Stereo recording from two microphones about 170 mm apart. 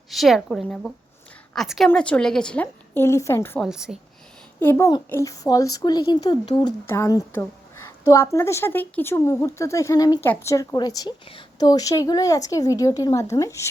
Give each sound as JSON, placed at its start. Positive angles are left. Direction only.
{"t": 0.1, "sound": "a woman's voice", "side_deg": 0}
{"t": 3.6, "sound": "a woman's voice", "side_deg": -5}
{"t": 4.6, "sound": "a woman's voice", "side_deg": 15}